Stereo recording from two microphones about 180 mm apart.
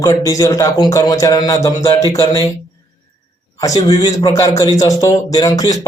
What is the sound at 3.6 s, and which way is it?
A man's voice, 20° left (ahead or behind).